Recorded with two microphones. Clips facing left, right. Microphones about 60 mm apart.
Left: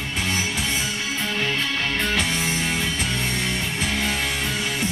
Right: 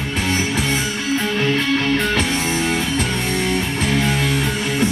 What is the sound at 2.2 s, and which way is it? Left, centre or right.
Music, right.